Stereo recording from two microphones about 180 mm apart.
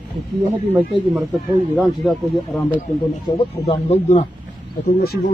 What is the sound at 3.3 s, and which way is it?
Speech, 30° left (ahead or behind).